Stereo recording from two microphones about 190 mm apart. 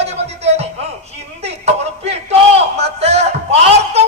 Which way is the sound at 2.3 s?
35° right (ahead or behind).